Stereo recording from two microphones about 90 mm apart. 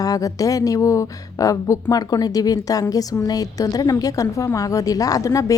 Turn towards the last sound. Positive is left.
turn(degrees=40)  # may be behind; listen again after turning